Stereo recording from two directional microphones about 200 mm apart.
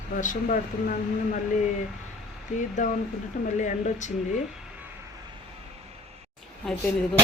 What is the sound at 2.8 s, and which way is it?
Speech, 40° left (ahead or behind).